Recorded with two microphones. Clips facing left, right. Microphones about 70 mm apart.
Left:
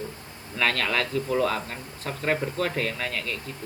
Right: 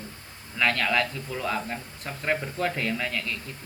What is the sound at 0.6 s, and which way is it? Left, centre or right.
Speech, centre.